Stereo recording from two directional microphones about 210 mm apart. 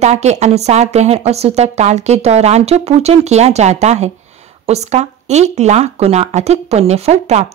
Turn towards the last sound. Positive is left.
turn(degrees=-30)  # may be behind; listen again after turning